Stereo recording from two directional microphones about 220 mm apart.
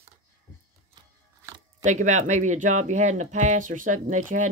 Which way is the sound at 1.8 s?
35° right (ahead or behind).